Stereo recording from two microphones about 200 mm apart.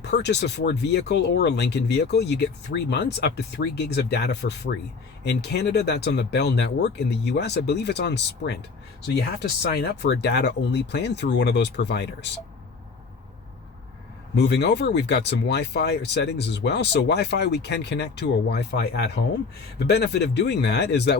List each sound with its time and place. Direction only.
0.0 s speech: 60° left (ahead or behind)
14.3 s speech: 55° left (ahead or behind)